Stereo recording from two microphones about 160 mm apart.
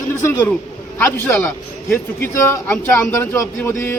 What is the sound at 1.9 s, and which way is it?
Speech, 15° left (ahead or behind).